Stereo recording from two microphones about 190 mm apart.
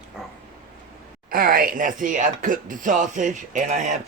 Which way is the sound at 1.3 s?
50° right (ahead or behind).